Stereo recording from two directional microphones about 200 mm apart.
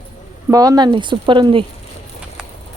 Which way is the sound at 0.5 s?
15° right (ahead or behind).